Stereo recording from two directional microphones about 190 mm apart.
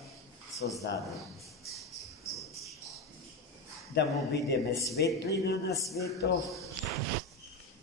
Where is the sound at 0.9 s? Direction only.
60° left (ahead or behind).